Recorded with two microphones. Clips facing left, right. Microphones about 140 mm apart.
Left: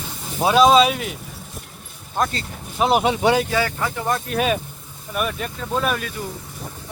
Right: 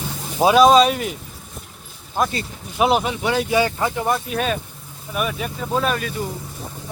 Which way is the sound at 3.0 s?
25° left (ahead or behind).